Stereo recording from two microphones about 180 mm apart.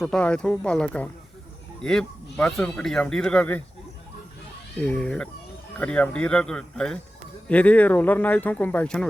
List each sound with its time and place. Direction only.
0.0 s speech: 5° left (ahead or behind)
4.8 s speech: 5° left (ahead or behind)